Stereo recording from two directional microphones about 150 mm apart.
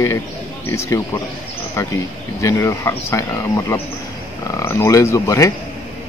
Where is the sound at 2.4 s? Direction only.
20° left (ahead or behind).